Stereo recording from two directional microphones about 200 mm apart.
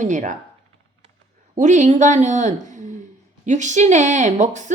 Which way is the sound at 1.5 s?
40° right (ahead or behind).